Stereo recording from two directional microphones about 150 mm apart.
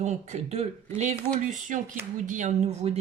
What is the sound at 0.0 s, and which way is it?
Speech, 50° right (ahead or behind).